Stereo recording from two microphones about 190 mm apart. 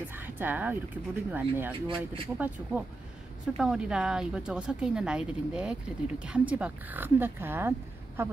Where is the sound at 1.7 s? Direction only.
25° right (ahead or behind).